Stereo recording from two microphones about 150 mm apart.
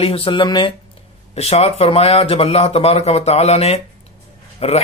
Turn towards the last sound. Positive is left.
turn(degrees=40)  # may be behind; listen again after turning